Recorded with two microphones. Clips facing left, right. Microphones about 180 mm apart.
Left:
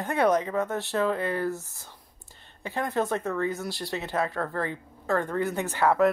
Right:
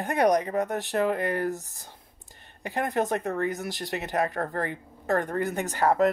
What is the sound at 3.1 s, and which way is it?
Speech, 55° right (ahead or behind).